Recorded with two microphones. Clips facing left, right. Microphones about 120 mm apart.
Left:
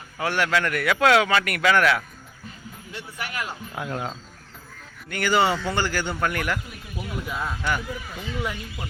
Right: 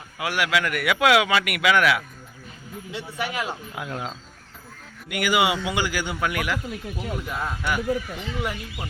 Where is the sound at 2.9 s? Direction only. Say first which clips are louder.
Right 5 dB; 20° right (ahead or behind).